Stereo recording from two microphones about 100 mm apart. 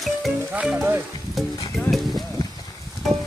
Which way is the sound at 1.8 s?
35° left (ahead or behind).